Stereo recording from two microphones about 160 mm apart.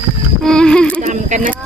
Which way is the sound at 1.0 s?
50° right (ahead or behind).